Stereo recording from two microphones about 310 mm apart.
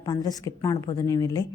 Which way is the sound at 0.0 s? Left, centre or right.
Centre.